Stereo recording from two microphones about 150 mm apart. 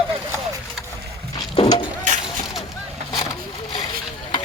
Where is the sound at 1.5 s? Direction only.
35° left (ahead or behind).